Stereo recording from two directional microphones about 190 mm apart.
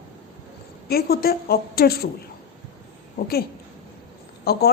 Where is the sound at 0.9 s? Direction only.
55° left (ahead or behind).